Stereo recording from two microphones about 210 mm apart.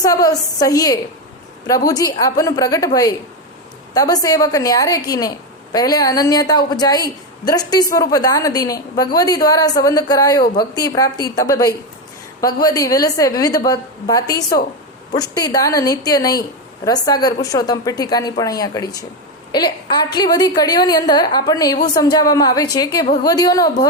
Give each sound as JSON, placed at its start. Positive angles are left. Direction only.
{"t": 0.0, "sound": "a woman's voice", "side_deg": 15}